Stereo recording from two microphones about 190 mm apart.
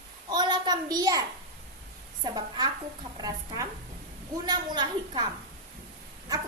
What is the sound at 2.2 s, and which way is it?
A woman's voice, 20° right (ahead or behind).